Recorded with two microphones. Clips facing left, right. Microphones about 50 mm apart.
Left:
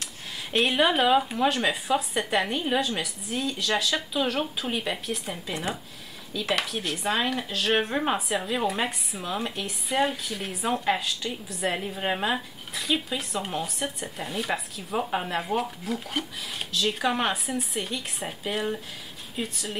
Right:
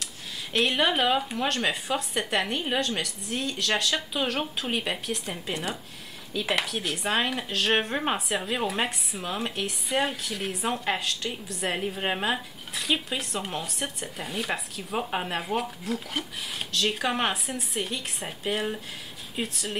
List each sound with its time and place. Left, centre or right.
0.5 s speech: centre
6.3 s speech: centre
6.6 s speech: centre
11.7 s speech: centre